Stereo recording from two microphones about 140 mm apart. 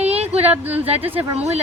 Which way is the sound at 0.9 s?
15° right (ahead or behind).